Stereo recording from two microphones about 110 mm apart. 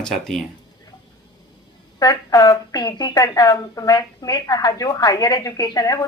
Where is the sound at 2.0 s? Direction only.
35° left (ahead or behind).